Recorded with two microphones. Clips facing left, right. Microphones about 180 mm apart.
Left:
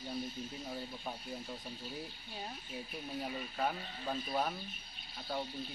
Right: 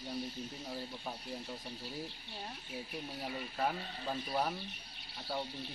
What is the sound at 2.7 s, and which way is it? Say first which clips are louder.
Speech: even; 5° right (ahead or behind).